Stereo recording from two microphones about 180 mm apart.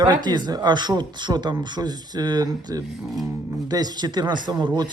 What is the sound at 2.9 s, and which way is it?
Speech, centre (ahead or behind).